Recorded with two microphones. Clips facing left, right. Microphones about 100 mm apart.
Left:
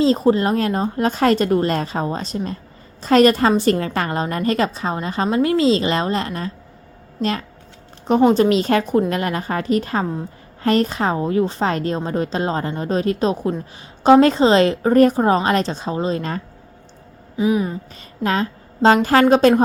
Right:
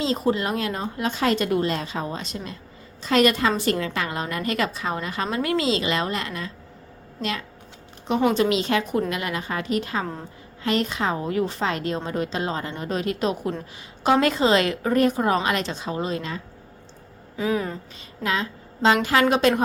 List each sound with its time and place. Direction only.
0.0 s a woman's voice: 35° left (ahead or behind)
17.3 s a woman's voice: 20° left (ahead or behind)
18.2 s a woman's voice: 40° left (ahead or behind)